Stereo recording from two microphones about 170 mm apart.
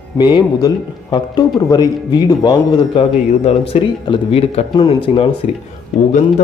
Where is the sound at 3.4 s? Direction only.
35° left (ahead or behind).